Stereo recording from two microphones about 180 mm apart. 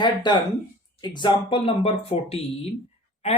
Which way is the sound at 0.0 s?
25° left (ahead or behind).